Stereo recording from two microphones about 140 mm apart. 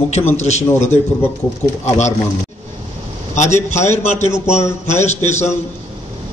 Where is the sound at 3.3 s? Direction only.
55° left (ahead or behind).